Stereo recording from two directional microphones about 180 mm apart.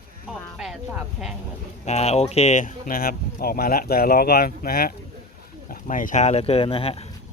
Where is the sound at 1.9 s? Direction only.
35° left (ahead or behind).